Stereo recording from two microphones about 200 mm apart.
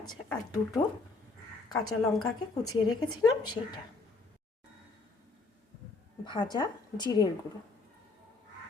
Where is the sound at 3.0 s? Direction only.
90° left.